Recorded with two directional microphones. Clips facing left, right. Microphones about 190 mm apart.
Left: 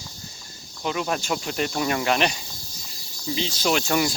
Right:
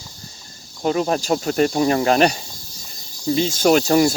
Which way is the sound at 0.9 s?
35° right (ahead or behind).